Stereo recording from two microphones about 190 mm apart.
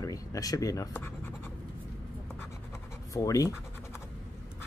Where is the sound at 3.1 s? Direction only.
15° left (ahead or behind).